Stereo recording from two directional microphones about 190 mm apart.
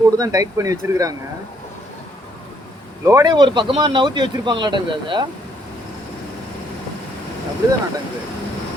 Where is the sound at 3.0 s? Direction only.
20° right (ahead or behind).